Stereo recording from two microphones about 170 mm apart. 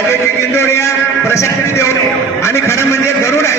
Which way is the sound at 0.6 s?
15° left (ahead or behind).